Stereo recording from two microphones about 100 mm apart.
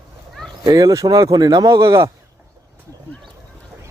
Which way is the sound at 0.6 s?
35° right (ahead or behind).